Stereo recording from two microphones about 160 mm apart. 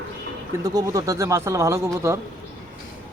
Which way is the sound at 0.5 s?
25° right (ahead or behind).